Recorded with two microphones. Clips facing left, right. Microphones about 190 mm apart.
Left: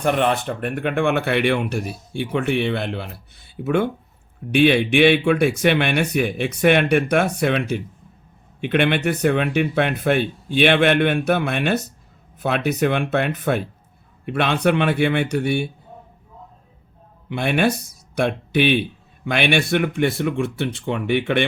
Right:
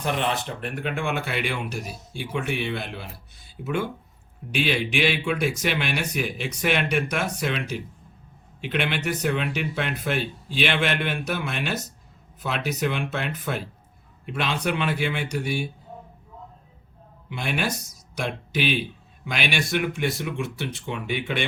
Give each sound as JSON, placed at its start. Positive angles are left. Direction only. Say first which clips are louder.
{"t": 0.0, "sound": "speech", "louder": "left 7 dB", "side_deg": 55}
{"t": 17.2, "sound": "speech", "louder": "left 8 dB", "side_deg": 60}